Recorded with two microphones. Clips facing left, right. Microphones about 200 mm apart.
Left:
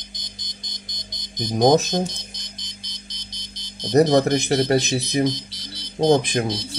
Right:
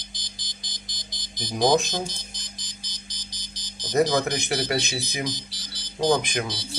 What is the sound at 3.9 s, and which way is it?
Speech, 35° left (ahead or behind).